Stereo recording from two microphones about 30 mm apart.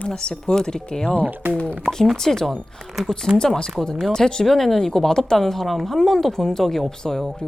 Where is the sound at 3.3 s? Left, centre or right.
Centre.